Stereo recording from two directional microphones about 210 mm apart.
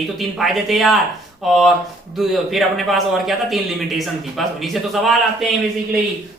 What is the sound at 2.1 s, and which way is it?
A man's voice, centre (ahead or behind).